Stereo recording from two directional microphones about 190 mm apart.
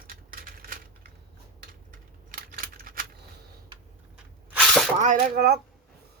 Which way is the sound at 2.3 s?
50° right (ahead or behind).